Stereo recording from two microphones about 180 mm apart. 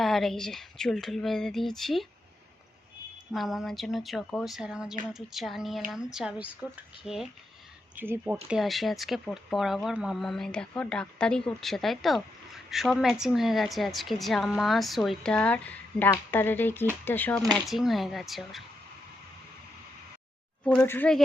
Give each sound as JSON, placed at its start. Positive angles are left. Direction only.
{"t": 0.0, "sound": "speech", "side_deg": 0}
{"t": 3.3, "sound": "speech", "side_deg": 0}
{"t": 20.7, "sound": "speech", "side_deg": 10}